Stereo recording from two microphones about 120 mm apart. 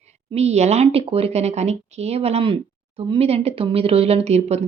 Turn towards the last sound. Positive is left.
turn(degrees=-65)  # may be behind; listen again after turning